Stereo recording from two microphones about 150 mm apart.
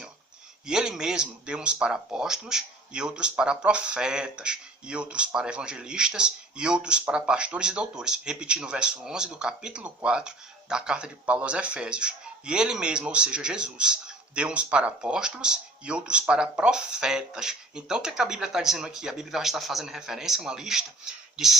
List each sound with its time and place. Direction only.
0.7 s speech: 5° right (ahead or behind)